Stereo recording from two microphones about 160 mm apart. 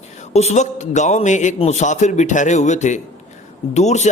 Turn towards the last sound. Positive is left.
turn(degrees=45)  # may be behind; listen again after turning